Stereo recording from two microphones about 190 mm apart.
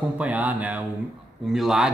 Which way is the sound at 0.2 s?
10° right (ahead or behind).